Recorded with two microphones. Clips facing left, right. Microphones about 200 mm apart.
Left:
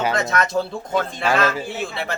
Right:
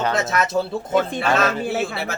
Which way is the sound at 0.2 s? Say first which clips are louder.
Even; 5° right (ahead or behind).